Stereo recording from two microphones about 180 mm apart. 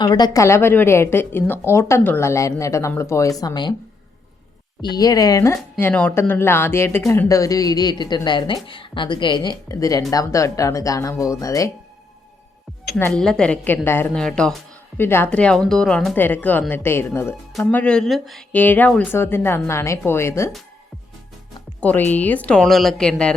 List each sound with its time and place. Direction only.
0.0 s speech: 20° left (ahead or behind)
4.9 s a woman's voice: 20° left (ahead or behind)
13.0 s a woman's voice: 5° left (ahead or behind)
21.8 s speech: 10° left (ahead or behind)